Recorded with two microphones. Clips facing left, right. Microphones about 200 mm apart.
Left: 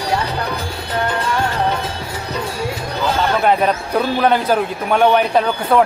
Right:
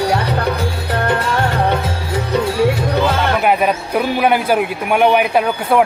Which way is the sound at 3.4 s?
10° right (ahead or behind).